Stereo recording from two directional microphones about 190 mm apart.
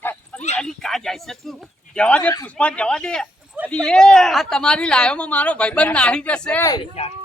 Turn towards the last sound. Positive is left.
turn(degrees=20)  # may be behind; listen again after turning